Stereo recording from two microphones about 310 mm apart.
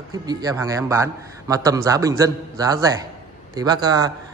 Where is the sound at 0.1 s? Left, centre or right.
Centre.